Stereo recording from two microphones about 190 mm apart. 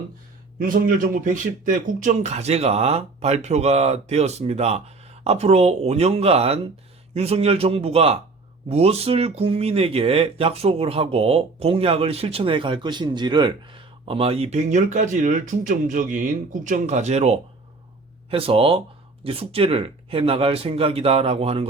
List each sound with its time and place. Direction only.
0.6 s speech: 45° right (ahead or behind)